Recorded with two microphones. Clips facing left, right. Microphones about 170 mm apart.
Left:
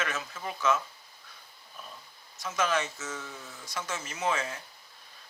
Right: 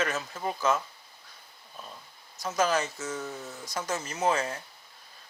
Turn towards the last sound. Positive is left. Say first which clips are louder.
# right 4 dB
turn(degrees=-40)  # may be behind; listen again after turning